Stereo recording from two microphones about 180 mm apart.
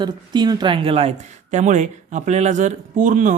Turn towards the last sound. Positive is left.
turn(degrees=-45)  # may be behind; listen again after turning